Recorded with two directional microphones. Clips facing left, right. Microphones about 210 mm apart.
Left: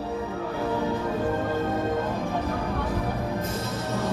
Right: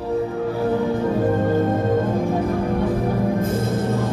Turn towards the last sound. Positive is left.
turn(degrees=-55)  # may be behind; listen again after turning